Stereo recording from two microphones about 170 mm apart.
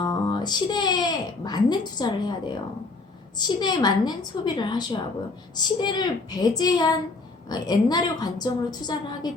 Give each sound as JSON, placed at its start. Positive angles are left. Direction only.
{"t": 0.0, "sound": "a woman's voice", "side_deg": 25}